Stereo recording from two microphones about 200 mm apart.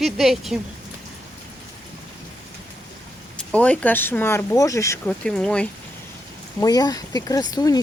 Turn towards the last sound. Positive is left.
turn(degrees=20)  # may be behind; listen again after turning